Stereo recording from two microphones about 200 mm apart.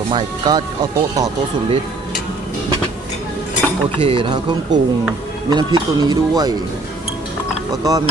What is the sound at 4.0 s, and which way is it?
Speech, 25° right (ahead or behind).